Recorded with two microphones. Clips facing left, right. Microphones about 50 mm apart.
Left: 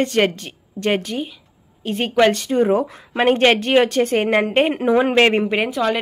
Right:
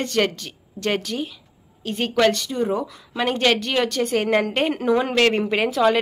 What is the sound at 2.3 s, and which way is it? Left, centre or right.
Speech, left.